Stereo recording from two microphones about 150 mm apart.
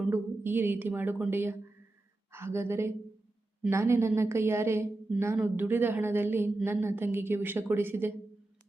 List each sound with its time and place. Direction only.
0.0 s a woman's voice: 15° right (ahead or behind)